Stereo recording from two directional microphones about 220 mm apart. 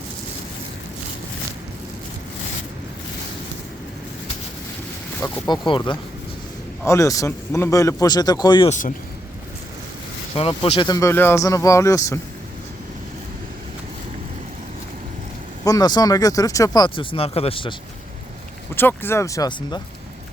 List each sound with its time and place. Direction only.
5.2 s speech: 15° left (ahead or behind)
10.3 s speech: 25° left (ahead or behind)
15.6 s speech: 15° left (ahead or behind)
18.8 s speech: 10° left (ahead or behind)